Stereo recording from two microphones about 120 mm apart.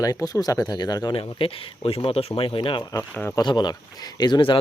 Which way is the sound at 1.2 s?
50° left (ahead or behind).